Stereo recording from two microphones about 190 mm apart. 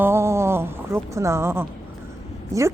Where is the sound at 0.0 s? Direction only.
15° right (ahead or behind).